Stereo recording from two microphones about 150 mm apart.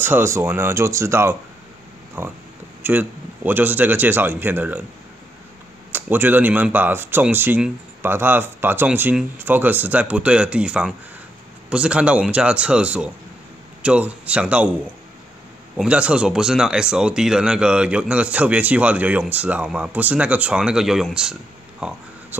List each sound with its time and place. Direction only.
0.0 s speech: 15° right (ahead or behind)
5.9 s speech: 15° right (ahead or behind)
15.7 s speech: 5° right (ahead or behind)